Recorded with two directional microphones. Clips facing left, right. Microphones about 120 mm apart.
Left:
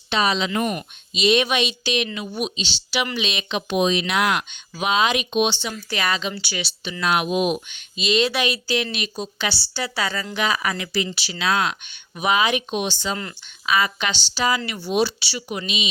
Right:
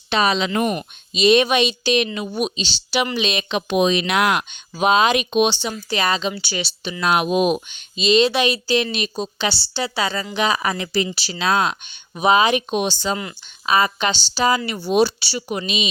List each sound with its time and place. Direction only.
0.1 s speech: 55° right (ahead or behind)
0.6 s a woman's voice: 25° right (ahead or behind)
1.1 s speech: 40° right (ahead or behind)
3.7 s speech: 65° right (ahead or behind)
5.9 s a woman's voice: 30° right (ahead or behind)
7.0 s speech: 45° right (ahead or behind)
7.7 s a woman's voice: 30° right (ahead or behind)